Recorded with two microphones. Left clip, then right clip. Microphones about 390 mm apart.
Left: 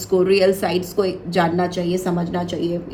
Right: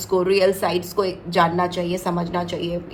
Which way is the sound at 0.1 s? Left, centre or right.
Right.